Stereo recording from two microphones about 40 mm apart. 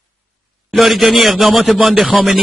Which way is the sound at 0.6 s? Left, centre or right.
Centre.